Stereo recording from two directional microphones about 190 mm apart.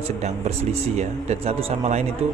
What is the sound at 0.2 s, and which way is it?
Speech, 35° right (ahead or behind).